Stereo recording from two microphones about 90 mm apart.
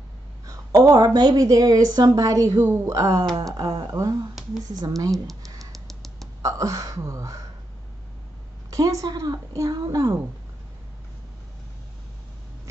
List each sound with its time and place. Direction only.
0.5 s a woman's voice: 40° right (ahead or behind)
5.7 s crow: centre (ahead or behind)
6.4 s a woman's voice: 35° right (ahead or behind)
8.6 s a woman's voice: 40° right (ahead or behind)